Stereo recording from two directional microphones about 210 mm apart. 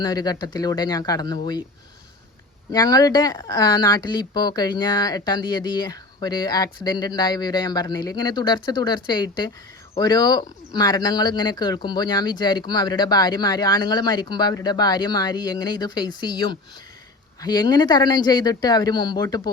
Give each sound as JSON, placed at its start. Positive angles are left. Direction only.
{"t": 0.0, "sound": "a woman's voice", "side_deg": 20}
{"t": 2.7, "sound": "a woman's voice", "side_deg": 20}